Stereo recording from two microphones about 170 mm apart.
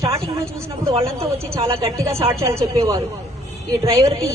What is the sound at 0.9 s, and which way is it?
Speech, 35° right (ahead or behind).